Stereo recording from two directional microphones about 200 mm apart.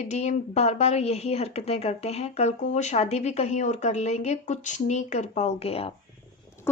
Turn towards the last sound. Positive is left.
turn(degrees=30)  # may be behind; listen again after turning